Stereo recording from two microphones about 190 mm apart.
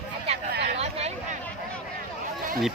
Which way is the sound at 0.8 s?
35° right (ahead or behind).